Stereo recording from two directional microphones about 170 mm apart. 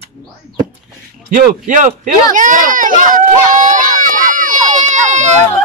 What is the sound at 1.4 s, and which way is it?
Speech, 50° right (ahead or behind).